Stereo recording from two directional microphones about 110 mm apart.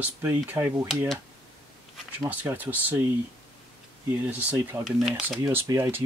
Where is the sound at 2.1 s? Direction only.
15° right (ahead or behind).